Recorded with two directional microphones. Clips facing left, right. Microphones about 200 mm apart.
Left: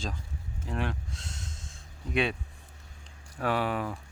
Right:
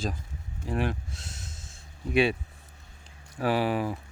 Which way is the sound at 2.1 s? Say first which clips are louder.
Right 5 dB; 5° right (ahead or behind).